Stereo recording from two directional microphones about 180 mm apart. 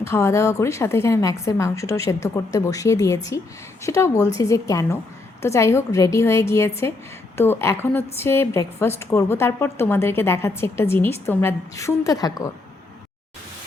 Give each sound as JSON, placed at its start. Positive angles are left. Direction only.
{"t": 0.0, "sound": "a woman's voice", "side_deg": 15}